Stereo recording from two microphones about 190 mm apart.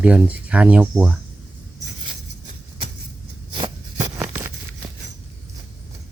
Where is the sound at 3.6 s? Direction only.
20° right (ahead or behind).